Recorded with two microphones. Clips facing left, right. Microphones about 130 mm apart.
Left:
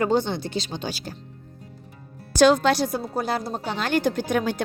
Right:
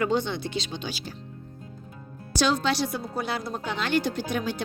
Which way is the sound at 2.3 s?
55° left (ahead or behind).